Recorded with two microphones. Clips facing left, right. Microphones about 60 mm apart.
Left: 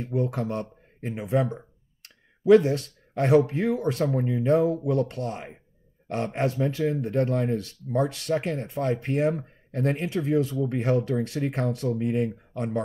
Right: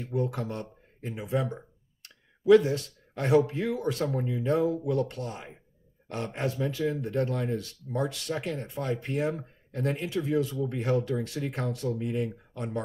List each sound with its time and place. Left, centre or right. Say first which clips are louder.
0.0 s speech: left 3 dB; left